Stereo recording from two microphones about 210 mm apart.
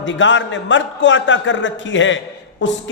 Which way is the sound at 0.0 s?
65° left (ahead or behind).